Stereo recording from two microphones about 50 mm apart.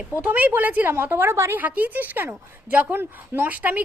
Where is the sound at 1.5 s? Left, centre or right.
Right.